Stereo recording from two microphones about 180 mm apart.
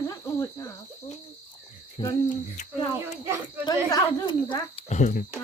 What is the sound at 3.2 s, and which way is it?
Speech, 10° right (ahead or behind).